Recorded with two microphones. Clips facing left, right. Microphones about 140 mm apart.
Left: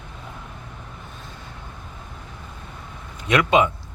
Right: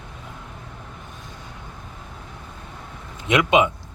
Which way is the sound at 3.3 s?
20° right (ahead or behind).